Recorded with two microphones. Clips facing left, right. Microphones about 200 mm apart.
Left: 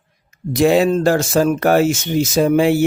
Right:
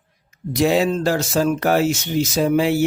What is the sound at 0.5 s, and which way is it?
Speech, 55° left (ahead or behind).